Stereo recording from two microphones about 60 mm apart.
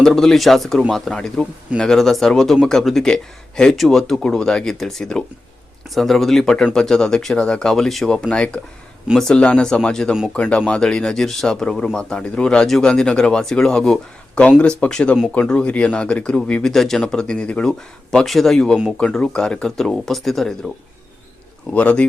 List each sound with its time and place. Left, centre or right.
0.0 s speech: centre
8.3 s a man's voice: centre
16.7 s speech: centre
17.7 s speech: centre
18.9 s speech: centre
21.7 s a man's voice: left